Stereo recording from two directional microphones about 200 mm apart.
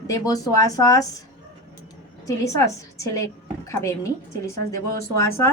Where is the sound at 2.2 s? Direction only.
15° left (ahead or behind).